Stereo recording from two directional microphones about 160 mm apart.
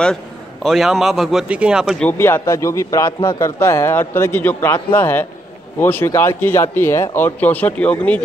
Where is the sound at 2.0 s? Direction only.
15° left (ahead or behind).